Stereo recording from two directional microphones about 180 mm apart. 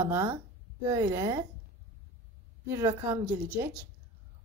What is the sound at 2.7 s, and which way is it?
A woman's voice, 15° right (ahead or behind).